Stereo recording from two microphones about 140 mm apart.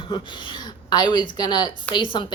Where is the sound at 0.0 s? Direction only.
35° left (ahead or behind).